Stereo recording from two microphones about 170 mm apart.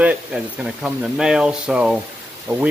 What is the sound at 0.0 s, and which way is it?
Speech, 5° right (ahead or behind).